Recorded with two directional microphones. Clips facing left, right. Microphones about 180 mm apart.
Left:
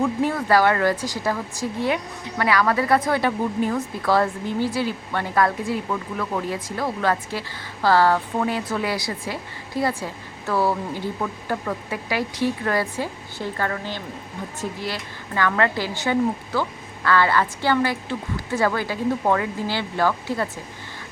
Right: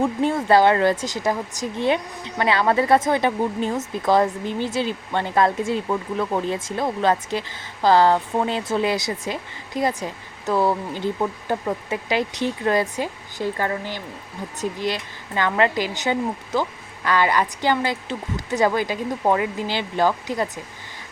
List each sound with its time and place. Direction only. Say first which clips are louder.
0.0 s speech: right 1 dB; 25° right (ahead or behind)